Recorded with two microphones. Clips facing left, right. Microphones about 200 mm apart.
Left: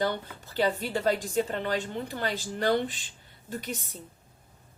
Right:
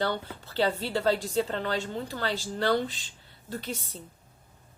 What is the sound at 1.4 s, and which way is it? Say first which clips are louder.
Speech: even; 15° left (ahead or behind).